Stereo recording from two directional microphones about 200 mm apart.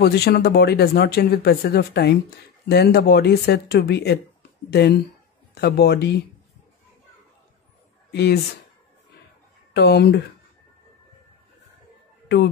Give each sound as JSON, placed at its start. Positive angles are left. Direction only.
{"t": 0.0, "sound": "speech", "side_deg": 55}
{"t": 8.1, "sound": "speech", "side_deg": 55}
{"t": 9.8, "sound": "speech", "side_deg": 55}